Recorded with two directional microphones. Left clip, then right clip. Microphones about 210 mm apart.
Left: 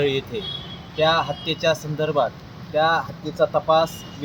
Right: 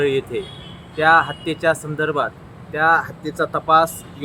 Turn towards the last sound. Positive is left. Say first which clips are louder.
# right 2 dB
turn(degrees=-10)  # may be behind; listen again after turning